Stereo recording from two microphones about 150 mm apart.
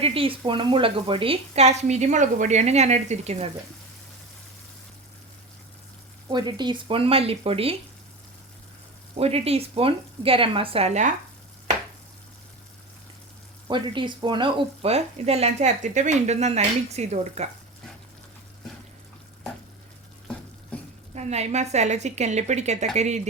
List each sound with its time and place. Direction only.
0.0 s speech: 40° right (ahead or behind)
6.3 s speech: 30° right (ahead or behind)
9.1 s speech: 40° right (ahead or behind)
13.7 s speech: 30° right (ahead or behind); by 17.5 s 45° right (ahead or behind)
20.7 s stir: 10° left (ahead or behind)
21.2 s speech: 50° right (ahead or behind)